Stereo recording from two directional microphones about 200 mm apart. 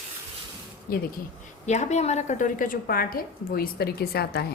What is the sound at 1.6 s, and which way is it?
A woman's voice, 35° left (ahead or behind).